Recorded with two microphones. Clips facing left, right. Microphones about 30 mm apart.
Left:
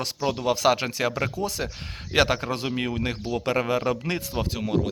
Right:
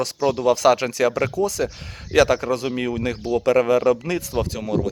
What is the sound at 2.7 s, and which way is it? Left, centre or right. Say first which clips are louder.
Speech: right 3 dB; centre.